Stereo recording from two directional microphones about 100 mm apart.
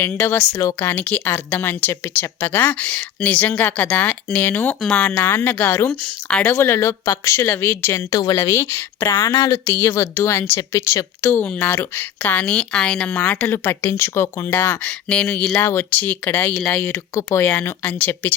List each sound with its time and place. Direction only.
0.0 s a woman's voice: 20° left (ahead or behind)
5.9 s speech: 10° left (ahead or behind)
6.5 s a woman's voice: 25° left (ahead or behind)
9.1 s speech: 40° left (ahead or behind)
9.6 s a woman's voice: 25° left (ahead or behind)